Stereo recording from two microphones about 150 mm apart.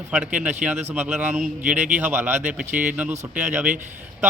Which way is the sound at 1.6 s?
55° right (ahead or behind).